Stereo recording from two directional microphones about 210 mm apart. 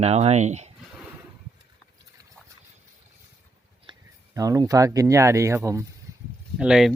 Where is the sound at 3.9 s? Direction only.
20° right (ahead or behind).